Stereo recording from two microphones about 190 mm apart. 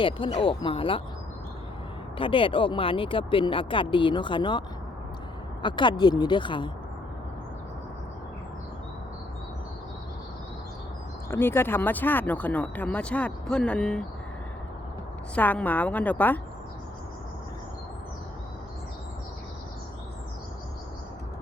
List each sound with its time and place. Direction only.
0.0 s speech: 30° left (ahead or behind)
2.1 s speech: 25° left (ahead or behind)
5.6 s speech: 25° left (ahead or behind)
11.3 s speech: 10° left (ahead or behind)
15.4 s speech: 10° left (ahead or behind)